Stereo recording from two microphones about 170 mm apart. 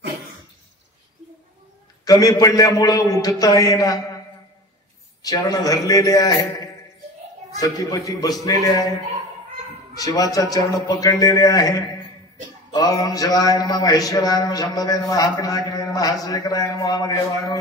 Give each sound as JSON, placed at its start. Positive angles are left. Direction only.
{"t": 2.0, "sound": "a man's voice", "side_deg": 20}
{"t": 5.2, "sound": "a man's voice", "side_deg": 20}
{"t": 9.9, "sound": "a man's voice", "side_deg": 20}